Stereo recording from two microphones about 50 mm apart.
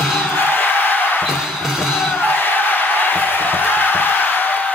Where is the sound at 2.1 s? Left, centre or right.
Left.